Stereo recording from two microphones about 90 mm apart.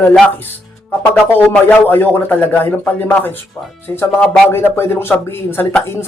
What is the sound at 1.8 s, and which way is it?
Speech, 20° left (ahead or behind).